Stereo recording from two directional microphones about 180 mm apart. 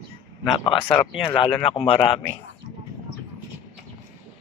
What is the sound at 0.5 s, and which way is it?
Speech, 25° left (ahead or behind).